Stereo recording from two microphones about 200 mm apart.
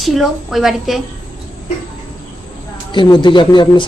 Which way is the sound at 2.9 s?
25° left (ahead or behind).